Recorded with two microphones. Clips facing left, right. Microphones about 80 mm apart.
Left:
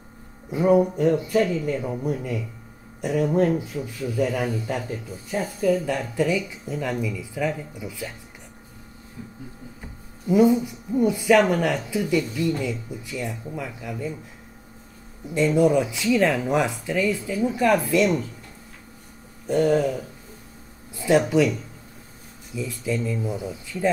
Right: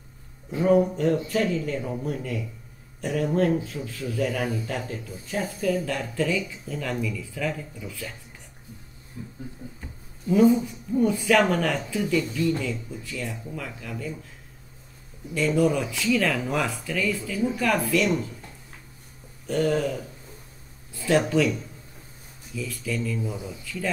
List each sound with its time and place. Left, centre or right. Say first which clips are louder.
0.5 s a man's voice: left 2 dB; centre
10.2 s a man's voice: left 1 dB; centre
15.3 s speech: left 4 dB; left
19.4 s a man's voice: left 4 dB; centre